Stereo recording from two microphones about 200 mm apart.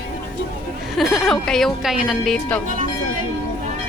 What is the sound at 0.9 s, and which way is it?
Speech, centre (ahead or behind).